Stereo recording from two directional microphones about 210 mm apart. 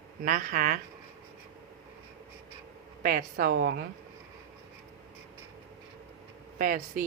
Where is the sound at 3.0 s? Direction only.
45° right (ahead or behind).